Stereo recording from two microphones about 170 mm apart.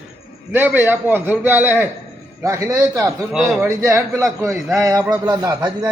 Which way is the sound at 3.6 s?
15° right (ahead or behind).